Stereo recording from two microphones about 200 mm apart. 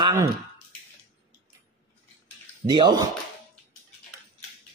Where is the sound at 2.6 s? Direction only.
20° right (ahead or behind).